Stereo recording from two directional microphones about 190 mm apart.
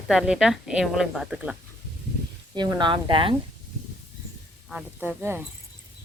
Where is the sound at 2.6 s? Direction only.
25° right (ahead or behind).